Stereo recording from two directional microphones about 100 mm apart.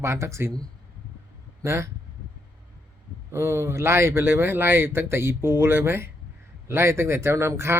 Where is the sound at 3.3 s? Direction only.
30° right (ahead or behind).